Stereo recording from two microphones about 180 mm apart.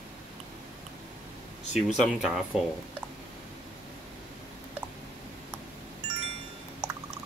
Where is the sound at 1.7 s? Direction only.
Centre (ahead or behind).